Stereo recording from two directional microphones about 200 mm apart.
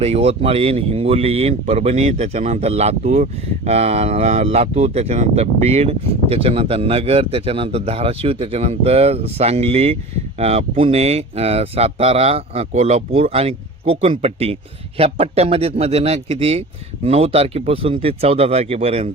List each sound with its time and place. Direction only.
0.0 s speech: 30° right (ahead or behind)